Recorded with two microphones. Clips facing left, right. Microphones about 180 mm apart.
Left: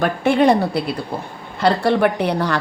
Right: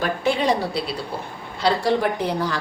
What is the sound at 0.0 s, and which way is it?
A woman's voice, 60° left (ahead or behind).